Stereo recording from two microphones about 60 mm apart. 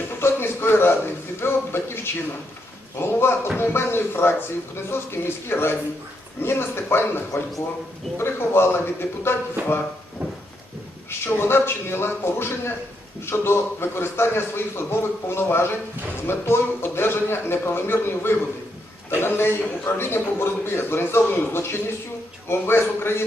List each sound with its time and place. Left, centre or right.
0.2 s a sound: left
3.0 s a man's voice: left
11.3 s a man's voice: left